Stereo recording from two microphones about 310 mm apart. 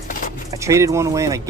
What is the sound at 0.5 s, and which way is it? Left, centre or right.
Speech, centre.